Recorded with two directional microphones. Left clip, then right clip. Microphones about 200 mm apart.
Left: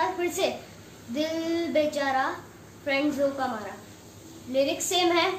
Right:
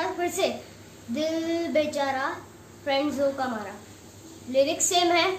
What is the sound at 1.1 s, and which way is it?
Child singing, 20° right (ahead or behind).